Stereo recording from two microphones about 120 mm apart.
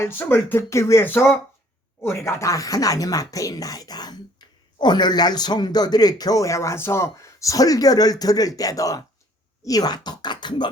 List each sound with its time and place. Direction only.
0.0 s speech: 20° left (ahead or behind); by 10.7 s 40° left (ahead or behind)